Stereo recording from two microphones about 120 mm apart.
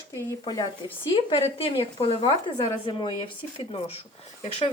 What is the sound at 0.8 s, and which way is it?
Speech, 45° left (ahead or behind).